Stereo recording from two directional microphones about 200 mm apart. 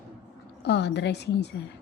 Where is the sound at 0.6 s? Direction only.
60° left (ahead or behind).